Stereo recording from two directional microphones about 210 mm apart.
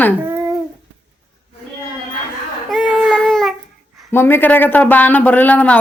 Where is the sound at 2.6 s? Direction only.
Centre (ahead or behind).